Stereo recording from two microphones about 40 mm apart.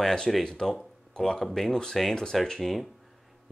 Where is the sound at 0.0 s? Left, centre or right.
Centre.